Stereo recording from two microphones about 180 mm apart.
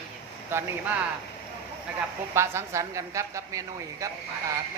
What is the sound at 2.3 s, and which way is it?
A woman's voice, 15° right (ahead or behind).